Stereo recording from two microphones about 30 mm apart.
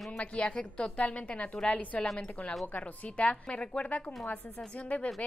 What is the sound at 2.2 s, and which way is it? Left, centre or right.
Speech, left.